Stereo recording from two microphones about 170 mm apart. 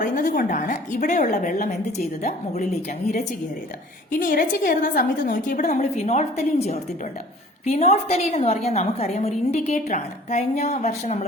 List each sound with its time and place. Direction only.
0.0 s a woman's voice: 50° left (ahead or behind)
4.2 s a woman's voice: 55° left (ahead or behind)